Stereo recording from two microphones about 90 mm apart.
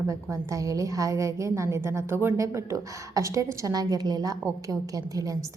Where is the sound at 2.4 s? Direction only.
35° right (ahead or behind).